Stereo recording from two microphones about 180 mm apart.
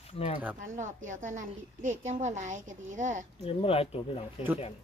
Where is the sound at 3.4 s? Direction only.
35° left (ahead or behind).